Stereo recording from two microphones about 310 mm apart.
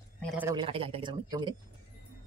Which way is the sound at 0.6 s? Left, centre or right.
Centre.